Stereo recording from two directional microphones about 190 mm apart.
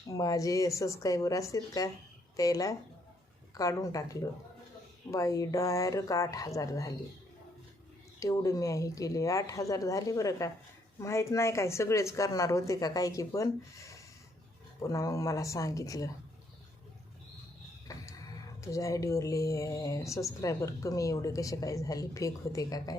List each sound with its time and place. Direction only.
0.1 s a woman's voice: 20° left (ahead or behind)
8.2 s a woman's voice: 15° left (ahead or behind)
17.9 s music: 15° left (ahead or behind)
18.6 s a woman's voice: 15° left (ahead or behind)